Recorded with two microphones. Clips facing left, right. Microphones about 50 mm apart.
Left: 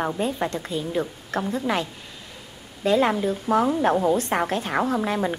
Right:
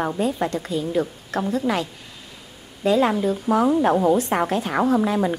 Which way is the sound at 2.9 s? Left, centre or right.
Left.